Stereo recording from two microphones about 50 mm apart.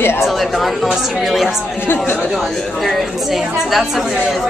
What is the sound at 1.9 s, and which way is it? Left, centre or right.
Speech, left.